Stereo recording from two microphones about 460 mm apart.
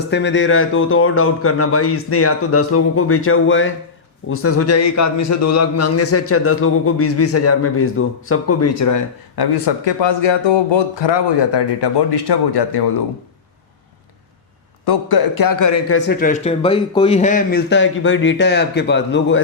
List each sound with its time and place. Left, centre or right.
0.1 s a man's voice: left
14.8 s a man's voice: left
16.0 s speech: centre